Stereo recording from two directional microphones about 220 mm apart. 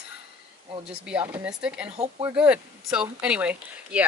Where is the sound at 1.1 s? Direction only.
5° right (ahead or behind).